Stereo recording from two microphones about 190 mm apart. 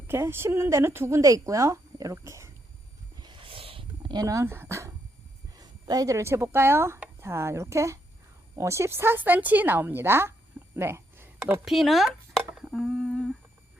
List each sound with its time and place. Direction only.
0.1 s speech: 10° right (ahead or behind)
3.2 s wild animals: 25° right (ahead or behind)
5.5 s speech: 20° right (ahead or behind); by 12.1 s centre (ahead or behind)
12.5 s humming: centre (ahead or behind)